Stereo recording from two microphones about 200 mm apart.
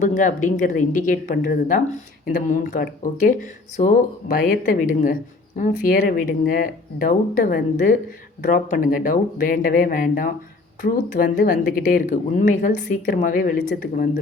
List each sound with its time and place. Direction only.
0.0 s speech: 40° left (ahead or behind)